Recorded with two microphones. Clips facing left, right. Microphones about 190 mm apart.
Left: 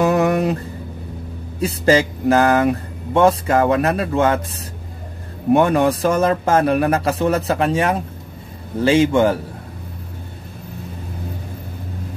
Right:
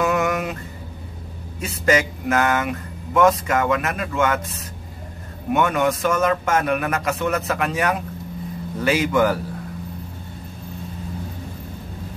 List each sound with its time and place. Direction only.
0.0 s mantra: 35° left (ahead or behind)
1.6 s speech: 30° left (ahead or behind)
5.5 s speech: 35° left (ahead or behind)